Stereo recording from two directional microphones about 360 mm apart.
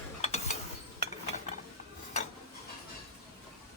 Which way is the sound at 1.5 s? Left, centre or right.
Centre.